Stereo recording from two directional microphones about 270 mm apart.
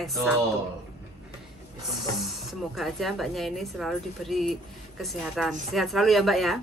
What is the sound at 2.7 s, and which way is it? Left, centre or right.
A woman's voice, centre.